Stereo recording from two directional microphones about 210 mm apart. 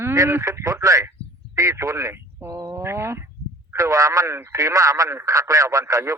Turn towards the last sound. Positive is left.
turn(degrees=-15)  # may be behind; listen again after turning